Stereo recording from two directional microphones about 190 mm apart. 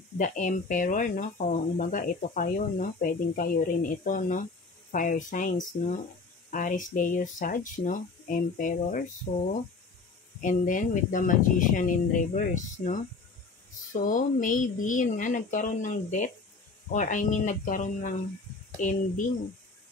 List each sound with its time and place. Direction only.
0.2 s speech: 40° left (ahead or behind)
14.0 s speech: 45° left (ahead or behind)